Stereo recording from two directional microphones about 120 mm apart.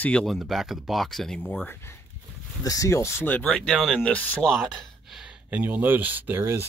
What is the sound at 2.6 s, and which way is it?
Speech, 30° left (ahead or behind).